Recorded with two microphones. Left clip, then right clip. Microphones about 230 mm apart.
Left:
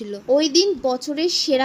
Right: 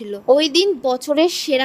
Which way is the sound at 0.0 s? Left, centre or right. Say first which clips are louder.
Right 4 dB; right.